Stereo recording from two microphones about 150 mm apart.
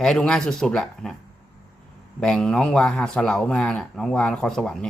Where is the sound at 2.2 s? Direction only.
5° left (ahead or behind).